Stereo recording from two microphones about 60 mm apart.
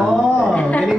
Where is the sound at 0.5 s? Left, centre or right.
Centre.